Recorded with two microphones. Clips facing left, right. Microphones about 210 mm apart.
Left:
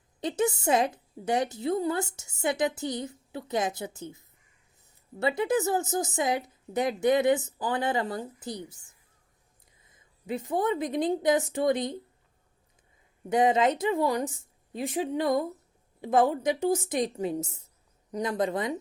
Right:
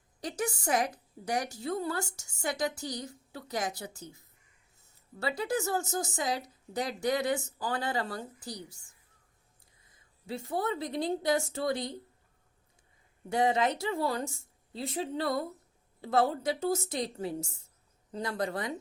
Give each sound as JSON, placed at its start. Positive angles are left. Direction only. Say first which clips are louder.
{"t": 0.2, "sound": "a woman's voice", "louder": "left 7 dB", "side_deg": 25}
{"t": 13.3, "sound": "a woman's voice", "louder": "left 4 dB", "side_deg": 20}